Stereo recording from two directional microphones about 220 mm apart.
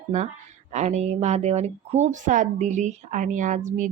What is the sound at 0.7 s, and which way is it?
A woman's voice, 30° right (ahead or behind).